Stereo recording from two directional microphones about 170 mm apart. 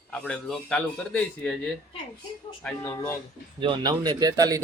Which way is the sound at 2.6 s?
15° left (ahead or behind).